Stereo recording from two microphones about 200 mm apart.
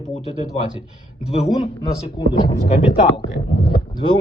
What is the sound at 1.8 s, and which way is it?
Speech, 25° left (ahead or behind).